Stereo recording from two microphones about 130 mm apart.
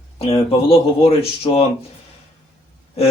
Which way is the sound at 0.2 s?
45° left (ahead or behind).